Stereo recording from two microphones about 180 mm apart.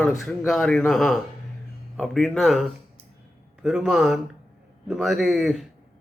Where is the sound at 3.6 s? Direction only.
5° right (ahead or behind).